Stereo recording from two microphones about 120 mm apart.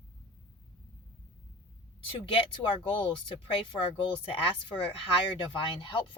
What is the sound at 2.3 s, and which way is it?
Speech, 45° left (ahead or behind).